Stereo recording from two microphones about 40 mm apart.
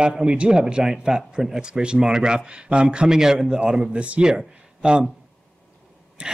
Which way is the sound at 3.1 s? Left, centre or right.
Centre.